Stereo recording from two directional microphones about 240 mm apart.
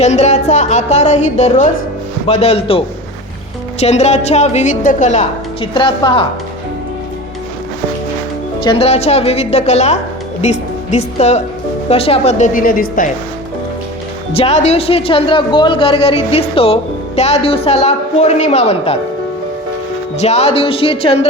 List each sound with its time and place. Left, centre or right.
0.0 s speech: left
5.7 s speech: centre
8.6 s speech: left
14.3 s speech: left
20.1 s speech: left